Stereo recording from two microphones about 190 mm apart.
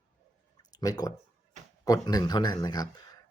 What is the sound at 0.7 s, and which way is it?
Speech, 20° left (ahead or behind).